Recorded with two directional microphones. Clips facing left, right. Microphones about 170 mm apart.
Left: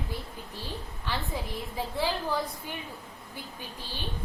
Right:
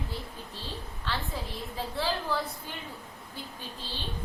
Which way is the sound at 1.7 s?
15° left (ahead or behind).